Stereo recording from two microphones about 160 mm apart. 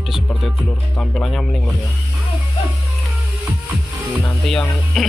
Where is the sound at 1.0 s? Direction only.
5° left (ahead or behind).